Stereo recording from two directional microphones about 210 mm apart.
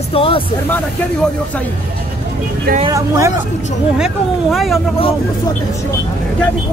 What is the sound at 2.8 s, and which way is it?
Speech, 15° right (ahead or behind).